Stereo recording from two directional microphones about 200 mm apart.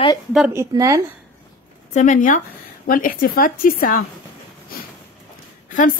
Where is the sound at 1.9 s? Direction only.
40° left (ahead or behind).